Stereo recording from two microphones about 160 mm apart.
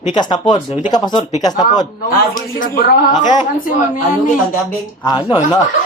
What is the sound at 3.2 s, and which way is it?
Speech, 30° left (ahead or behind).